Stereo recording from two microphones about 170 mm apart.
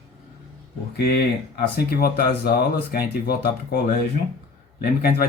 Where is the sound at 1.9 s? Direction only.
65° left (ahead or behind).